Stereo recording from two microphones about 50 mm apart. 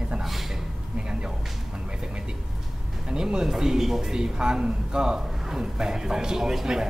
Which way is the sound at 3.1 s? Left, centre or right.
Centre.